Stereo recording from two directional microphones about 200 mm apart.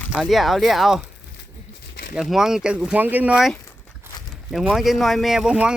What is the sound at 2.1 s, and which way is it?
Speech, centre (ahead or behind).